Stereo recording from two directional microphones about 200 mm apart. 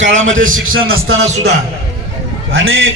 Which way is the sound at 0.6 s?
90° right.